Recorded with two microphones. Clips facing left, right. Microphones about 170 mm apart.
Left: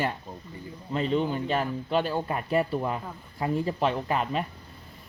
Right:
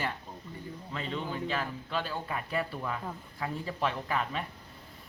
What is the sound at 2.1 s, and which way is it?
Speech, 40° left (ahead or behind).